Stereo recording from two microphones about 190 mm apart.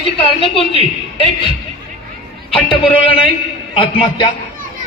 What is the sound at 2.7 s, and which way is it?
A man's voice, 30° left (ahead or behind).